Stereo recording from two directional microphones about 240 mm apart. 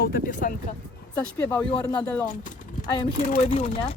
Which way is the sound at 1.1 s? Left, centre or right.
Centre.